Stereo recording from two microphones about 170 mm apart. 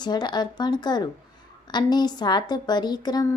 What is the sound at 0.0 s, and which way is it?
Speech, 25° left (ahead or behind).